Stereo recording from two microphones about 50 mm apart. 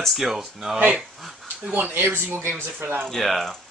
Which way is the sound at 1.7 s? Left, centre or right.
Right.